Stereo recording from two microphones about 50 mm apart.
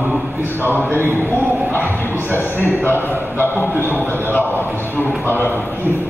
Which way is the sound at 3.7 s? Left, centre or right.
Right.